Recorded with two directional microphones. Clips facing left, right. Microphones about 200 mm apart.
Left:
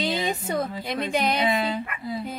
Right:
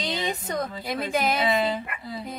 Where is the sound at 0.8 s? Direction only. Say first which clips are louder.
Right 2 dB; centre (ahead or behind).